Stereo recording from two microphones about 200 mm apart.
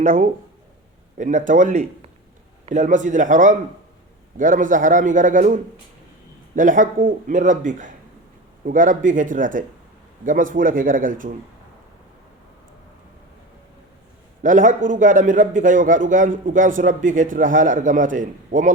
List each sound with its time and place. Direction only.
0.0 s a man's voice: 45° right (ahead or behind)
6.6 s a man's voice: 40° right (ahead or behind)
14.4 s a man's voice: 40° right (ahead or behind)